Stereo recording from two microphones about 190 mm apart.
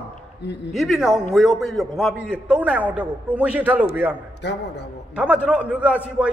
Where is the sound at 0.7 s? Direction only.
Centre (ahead or behind).